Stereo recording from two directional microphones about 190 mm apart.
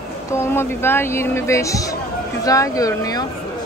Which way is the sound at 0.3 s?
15° left (ahead or behind).